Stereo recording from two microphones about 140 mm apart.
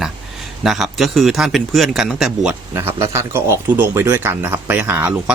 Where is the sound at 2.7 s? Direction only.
15° right (ahead or behind).